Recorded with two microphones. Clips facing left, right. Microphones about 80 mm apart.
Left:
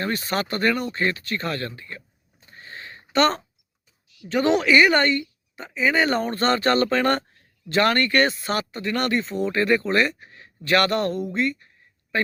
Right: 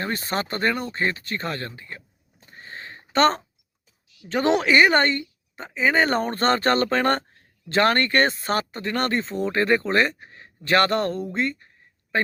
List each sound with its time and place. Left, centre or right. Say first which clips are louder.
0.0 s speech: left 1 dB; right
2.5 s a sound: right 1 dB; right
4.2 s speech: left 1 dB; right